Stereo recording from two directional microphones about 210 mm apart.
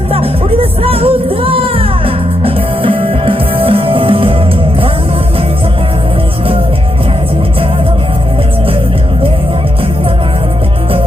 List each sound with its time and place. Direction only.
0.1 s music: 25° right (ahead or behind)